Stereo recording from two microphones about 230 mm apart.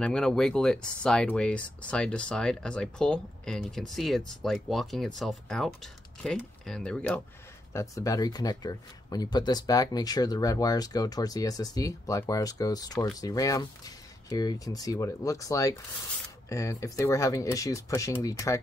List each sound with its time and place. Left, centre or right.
0.0 s speech: centre